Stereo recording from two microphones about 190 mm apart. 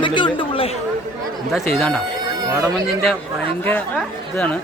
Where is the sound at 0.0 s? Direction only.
25° left (ahead or behind).